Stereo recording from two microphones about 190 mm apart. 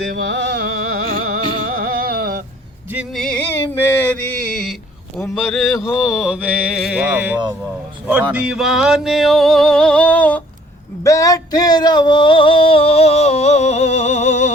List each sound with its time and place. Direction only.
0.2 s music: 60° right (ahead or behind)
2.9 s music: 5° right (ahead or behind)
5.1 s a sound: centre (ahead or behind)
11.0 s male singing: 20° left (ahead or behind); by 14.5 s 35° left (ahead or behind)